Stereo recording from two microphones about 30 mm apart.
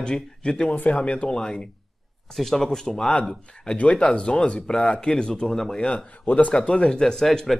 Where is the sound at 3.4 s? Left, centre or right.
Left.